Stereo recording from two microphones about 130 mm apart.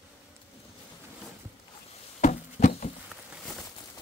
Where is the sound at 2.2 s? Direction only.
70° left (ahead or behind).